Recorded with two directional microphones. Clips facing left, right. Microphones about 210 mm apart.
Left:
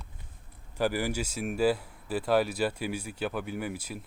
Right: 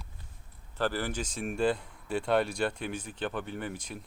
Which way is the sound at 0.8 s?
10° left (ahead or behind).